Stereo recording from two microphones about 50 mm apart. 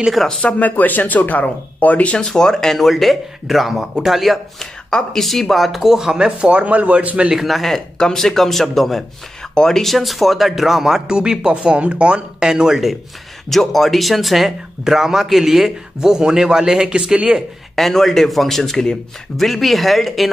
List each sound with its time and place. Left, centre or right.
0.1 s a man's voice: centre
0.4 s speech: left
2.1 s a man's voice: centre
4.6 s speech: centre; by 7.3 s right
7.3 s a man's voice: centre
13.5 s speech: centre
17.7 s a man's voice: centre